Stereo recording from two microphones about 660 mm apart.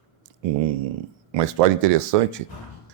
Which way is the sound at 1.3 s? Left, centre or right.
Right.